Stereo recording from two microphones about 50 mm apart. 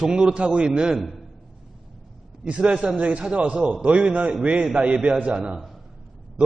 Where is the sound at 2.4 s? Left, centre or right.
Right.